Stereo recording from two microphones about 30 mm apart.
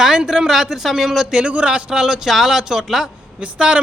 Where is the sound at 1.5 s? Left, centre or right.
Right.